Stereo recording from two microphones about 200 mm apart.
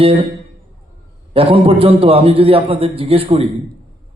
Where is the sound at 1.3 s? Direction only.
30° right (ahead or behind).